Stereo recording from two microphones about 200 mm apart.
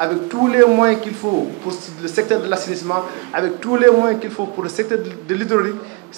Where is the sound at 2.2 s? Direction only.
15° right (ahead or behind).